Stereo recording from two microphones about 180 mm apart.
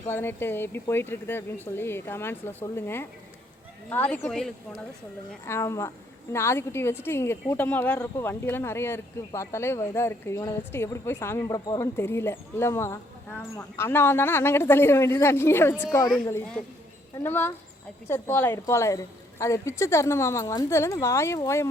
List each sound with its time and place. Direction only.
0.1 s speech: 10° left (ahead or behind)
5.5 s speech: 15° left (ahead or behind)
17.2 s speech: 10° left (ahead or behind)